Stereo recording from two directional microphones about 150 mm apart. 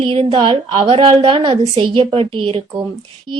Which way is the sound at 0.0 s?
35° right (ahead or behind).